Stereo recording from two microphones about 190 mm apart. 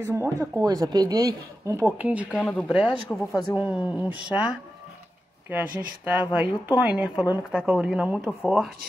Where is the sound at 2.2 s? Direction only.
5° left (ahead or behind).